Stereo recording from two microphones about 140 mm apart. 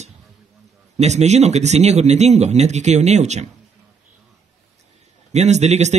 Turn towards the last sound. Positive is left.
turn(degrees=-55)  # may be behind; listen again after turning